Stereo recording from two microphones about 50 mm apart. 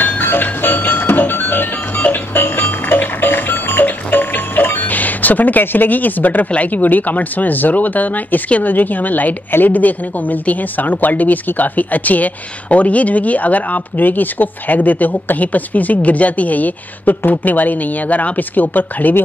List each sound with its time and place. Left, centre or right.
0.0 s music: left